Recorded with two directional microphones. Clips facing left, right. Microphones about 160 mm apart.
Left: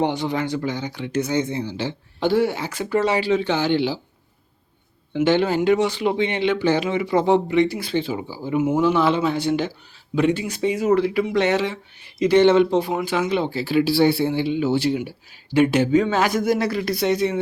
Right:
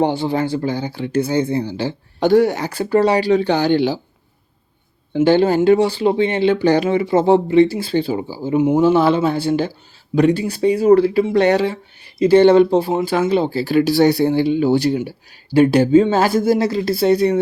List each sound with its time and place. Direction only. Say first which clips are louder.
0.0 s speech: right 4 dB; 30° right (ahead or behind)
5.1 s speech: right 5 dB; 35° right (ahead or behind)